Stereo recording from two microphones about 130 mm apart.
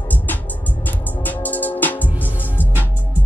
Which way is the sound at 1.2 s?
15° left (ahead or behind).